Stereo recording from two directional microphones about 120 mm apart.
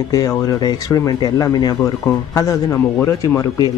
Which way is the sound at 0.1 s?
30° left (ahead or behind).